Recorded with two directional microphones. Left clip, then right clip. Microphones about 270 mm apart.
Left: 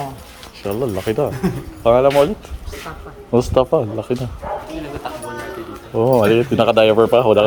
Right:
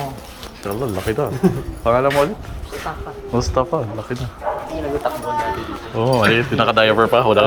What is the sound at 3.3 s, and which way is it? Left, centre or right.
Speech, left.